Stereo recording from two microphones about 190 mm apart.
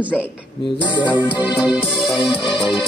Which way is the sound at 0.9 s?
25° left (ahead or behind).